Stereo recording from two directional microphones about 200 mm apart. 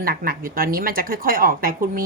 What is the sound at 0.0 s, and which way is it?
Speech, 50° right (ahead or behind).